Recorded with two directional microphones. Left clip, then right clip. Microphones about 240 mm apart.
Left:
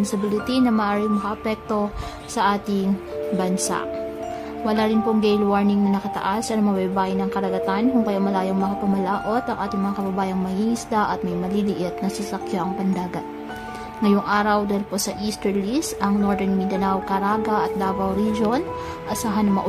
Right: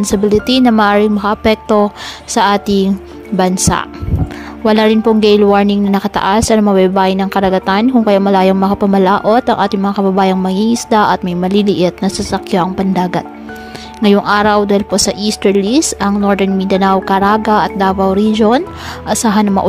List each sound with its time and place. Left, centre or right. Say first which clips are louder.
0.0 s a woman's voice: right 12 dB; right